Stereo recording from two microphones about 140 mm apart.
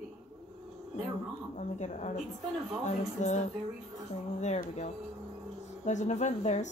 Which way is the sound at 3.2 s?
60° left (ahead or behind).